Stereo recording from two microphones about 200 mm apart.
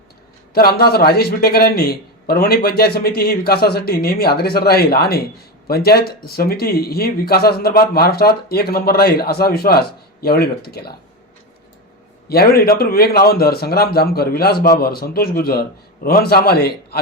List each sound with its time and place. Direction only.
0.5 s speech: 50° left (ahead or behind)
12.3 s speech: 50° left (ahead or behind)